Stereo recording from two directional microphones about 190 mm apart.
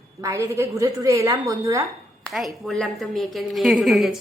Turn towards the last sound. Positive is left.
turn(degrees=0)  # may be behind; listen again after turning